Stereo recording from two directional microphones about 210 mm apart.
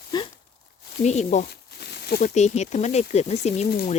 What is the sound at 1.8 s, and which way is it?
Speech, 50° left (ahead or behind).